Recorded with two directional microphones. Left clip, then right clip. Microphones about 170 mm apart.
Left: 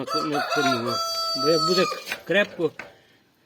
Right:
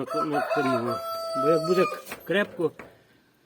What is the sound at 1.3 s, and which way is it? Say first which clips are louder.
Speech: left 1 dB; centre (ahead or behind).